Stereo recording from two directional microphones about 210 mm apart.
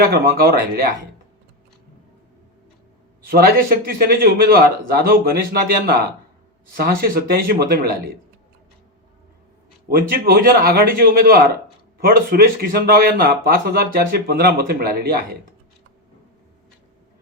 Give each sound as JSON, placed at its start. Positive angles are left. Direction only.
{"t": 0.0, "sound": "speech", "side_deg": -45}
{"t": 3.2, "sound": "speech", "side_deg": -45}
{"t": 10.1, "sound": "speech", "side_deg": -45}